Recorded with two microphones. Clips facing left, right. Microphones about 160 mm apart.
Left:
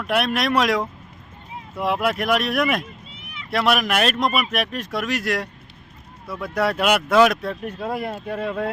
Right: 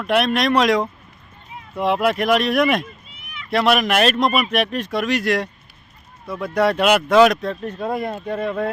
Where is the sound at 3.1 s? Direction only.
30° left (ahead or behind).